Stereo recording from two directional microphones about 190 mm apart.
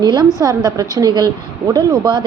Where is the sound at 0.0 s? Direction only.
20° right (ahead or behind).